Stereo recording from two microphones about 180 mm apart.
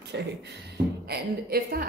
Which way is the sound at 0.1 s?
75° right (ahead or behind).